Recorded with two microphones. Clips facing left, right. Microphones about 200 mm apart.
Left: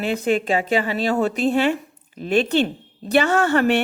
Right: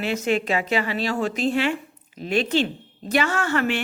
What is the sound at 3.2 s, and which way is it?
Speech, 35° left (ahead or behind).